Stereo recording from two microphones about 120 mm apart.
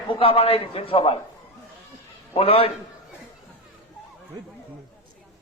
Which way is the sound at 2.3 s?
55° left (ahead or behind).